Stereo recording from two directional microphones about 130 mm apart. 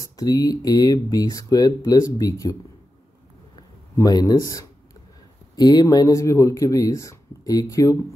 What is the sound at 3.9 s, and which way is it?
Speech, 30° left (ahead or behind).